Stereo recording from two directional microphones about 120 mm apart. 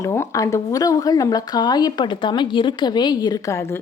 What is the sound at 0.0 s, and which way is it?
Speech, 25° left (ahead or behind).